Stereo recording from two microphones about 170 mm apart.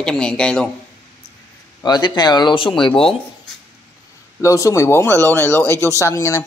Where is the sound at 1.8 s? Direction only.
25° left (ahead or behind).